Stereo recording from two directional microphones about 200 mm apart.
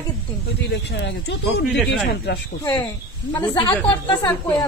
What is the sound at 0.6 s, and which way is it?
Speech, 60° left (ahead or behind).